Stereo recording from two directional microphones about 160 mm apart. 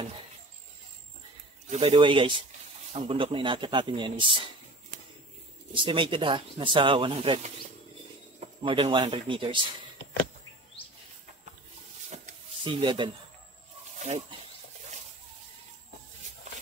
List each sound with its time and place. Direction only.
1.7 s speech: 40° right (ahead or behind)
5.8 s speech: 30° right (ahead or behind)
8.6 s speech: 30° right (ahead or behind)
12.6 s speech: 30° right (ahead or behind)